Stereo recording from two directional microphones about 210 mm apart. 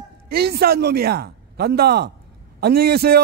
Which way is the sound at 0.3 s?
50° right (ahead or behind).